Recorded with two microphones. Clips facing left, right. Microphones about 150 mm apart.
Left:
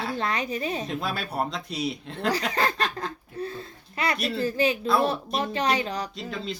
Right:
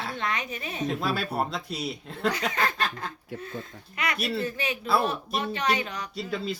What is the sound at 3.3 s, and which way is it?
Speech, 80° right.